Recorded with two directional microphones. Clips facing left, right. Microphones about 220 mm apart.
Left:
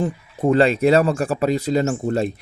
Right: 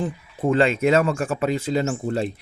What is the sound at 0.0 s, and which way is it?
Speech, 40° left (ahead or behind).